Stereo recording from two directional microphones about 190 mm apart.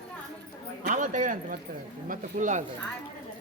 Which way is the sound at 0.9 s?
40° right (ahead or behind).